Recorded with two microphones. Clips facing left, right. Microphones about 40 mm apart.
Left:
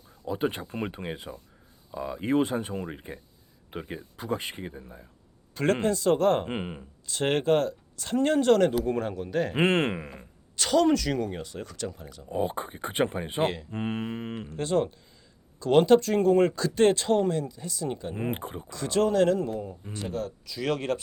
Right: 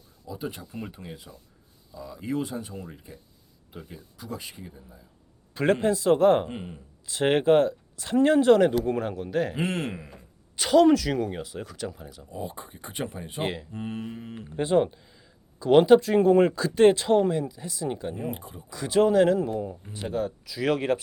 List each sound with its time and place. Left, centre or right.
0.3 s speech: left
5.8 s speech: centre
6.5 s speech: left
7.1 s speech: centre
9.6 s speech: left
10.6 s speech: centre
12.3 s speech: left
13.4 s speech: centre
13.7 s speech: left
14.5 s speech: centre
18.2 s speech: left
18.7 s speech: centre